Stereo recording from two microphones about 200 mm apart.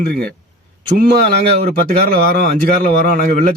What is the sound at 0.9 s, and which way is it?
A man's voice, 50° right (ahead or behind).